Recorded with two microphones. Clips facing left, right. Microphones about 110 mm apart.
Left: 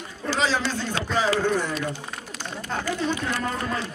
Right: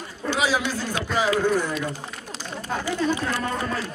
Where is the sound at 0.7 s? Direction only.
10° right (ahead or behind).